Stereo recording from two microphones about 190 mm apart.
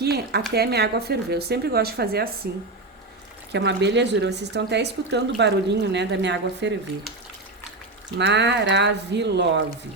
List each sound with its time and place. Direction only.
0.0 s a woman's voice: 55° right (ahead or behind)
3.5 s a woman's voice: 65° right (ahead or behind)
8.2 s a woman's voice: 65° right (ahead or behind)